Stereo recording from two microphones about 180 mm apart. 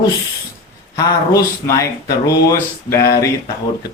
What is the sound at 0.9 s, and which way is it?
Speech, 20° left (ahead or behind).